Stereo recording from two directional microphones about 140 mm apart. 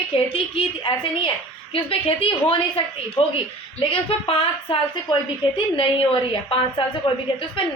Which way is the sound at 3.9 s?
40° left (ahead or behind).